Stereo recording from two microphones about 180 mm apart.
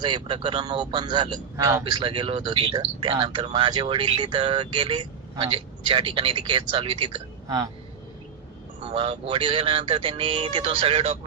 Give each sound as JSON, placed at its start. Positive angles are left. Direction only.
{"t": 0.0, "sound": "speech", "side_deg": -25}
{"t": 8.9, "sound": "speech", "side_deg": -30}